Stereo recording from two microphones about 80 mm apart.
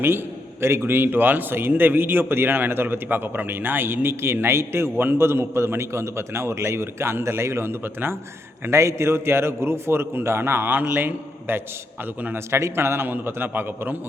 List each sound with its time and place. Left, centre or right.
0.6 s a man's voice: right